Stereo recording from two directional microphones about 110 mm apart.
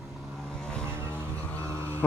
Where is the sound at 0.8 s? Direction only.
20° right (ahead or behind).